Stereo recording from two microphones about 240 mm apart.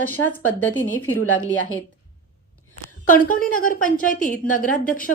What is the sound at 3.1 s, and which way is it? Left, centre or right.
A woman's voice, left.